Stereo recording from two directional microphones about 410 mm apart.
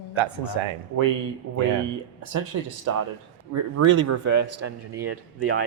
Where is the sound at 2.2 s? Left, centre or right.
Right.